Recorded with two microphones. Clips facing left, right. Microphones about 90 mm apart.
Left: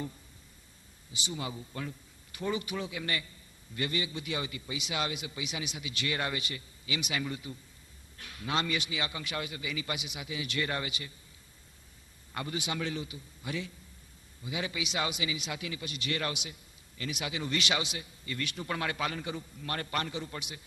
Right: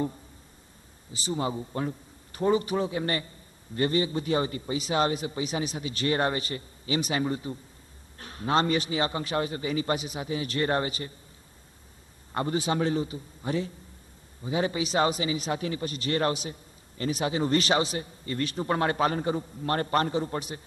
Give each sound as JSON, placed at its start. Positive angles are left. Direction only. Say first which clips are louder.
{"t": 1.1, "sound": "a man's voice", "louder": "right 8 dB", "side_deg": -35}
{"t": 12.3, "sound": "a man's voice", "louder": "right 9 dB", "side_deg": -35}